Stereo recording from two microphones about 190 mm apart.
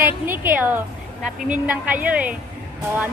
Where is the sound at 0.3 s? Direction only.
10° right (ahead or behind).